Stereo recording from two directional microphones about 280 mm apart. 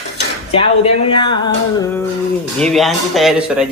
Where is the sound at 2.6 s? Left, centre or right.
Centre.